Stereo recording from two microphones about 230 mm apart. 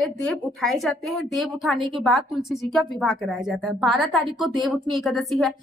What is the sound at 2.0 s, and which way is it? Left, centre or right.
A woman's voice, centre.